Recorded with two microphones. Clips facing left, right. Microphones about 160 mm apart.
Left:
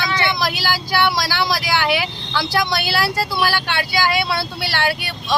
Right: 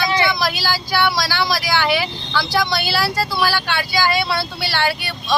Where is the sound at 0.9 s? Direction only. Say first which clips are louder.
Even; 20° left (ahead or behind).